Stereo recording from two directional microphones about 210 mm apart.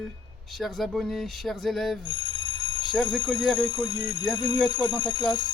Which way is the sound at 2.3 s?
20° left (ahead or behind).